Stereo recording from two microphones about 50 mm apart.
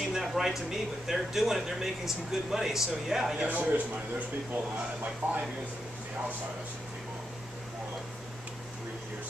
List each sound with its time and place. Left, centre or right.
0.1 s speech: centre
3.4 s a man's voice: right
5.2 s speech: right